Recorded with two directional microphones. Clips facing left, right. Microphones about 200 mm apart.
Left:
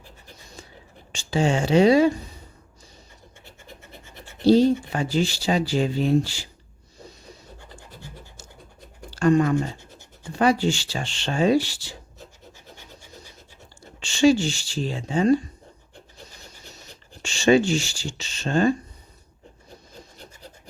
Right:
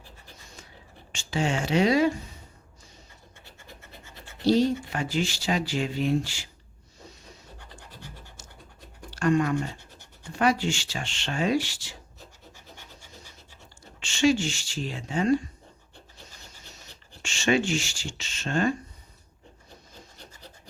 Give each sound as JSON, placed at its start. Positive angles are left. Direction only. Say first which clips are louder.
{"t": 0.4, "sound": "a sound", "louder": "left 7 dB", "side_deg": 35}
{"t": 1.1, "sound": "speech", "louder": "left 5 dB", "side_deg": 35}
{"t": 3.4, "sound": "scratch", "louder": "left 3 dB", "side_deg": 20}
{"t": 4.5, "sound": "speech", "louder": "left 6 dB", "side_deg": 30}
{"t": 9.0, "sound": "speech", "louder": "left 5 dB", "side_deg": 30}
{"t": 14.0, "sound": "speech", "louder": "left 5 dB", "side_deg": 35}
{"t": 17.2, "sound": "speech", "louder": "left 6 dB", "side_deg": 35}